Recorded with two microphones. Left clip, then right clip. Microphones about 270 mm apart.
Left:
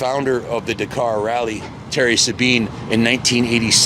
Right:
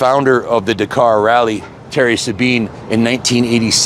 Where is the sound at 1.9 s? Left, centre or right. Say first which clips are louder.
Right 2 dB; right.